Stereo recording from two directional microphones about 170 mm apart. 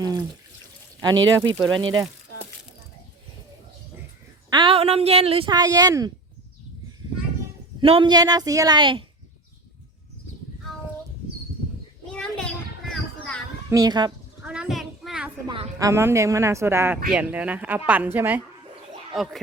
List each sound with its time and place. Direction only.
0.0 s water: 25° right (ahead or behind)
1.6 s a woman's voice: 20° right (ahead or behind)
4.4 s a woman's voice: 30° right (ahead or behind)
7.8 s a woman's voice: 30° right (ahead or behind)
12.1 s children playing: 5° left (ahead or behind)
13.7 s speech: 20° right (ahead or behind)
14.4 s a sound: 5° right (ahead or behind)
15.4 s a woman's voice: 30° right (ahead or behind)
15.8 s speech: 15° right (ahead or behind)
19.1 s a child's voice: centre (ahead or behind)